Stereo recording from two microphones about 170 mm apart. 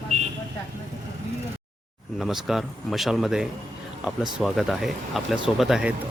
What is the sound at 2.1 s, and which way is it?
Speech, centre (ahead or behind).